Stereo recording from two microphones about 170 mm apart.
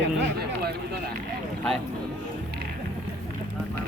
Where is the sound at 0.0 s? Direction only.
80° right.